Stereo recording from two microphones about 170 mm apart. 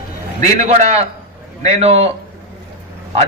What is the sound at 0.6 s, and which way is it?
A man's voice, 40° right (ahead or behind).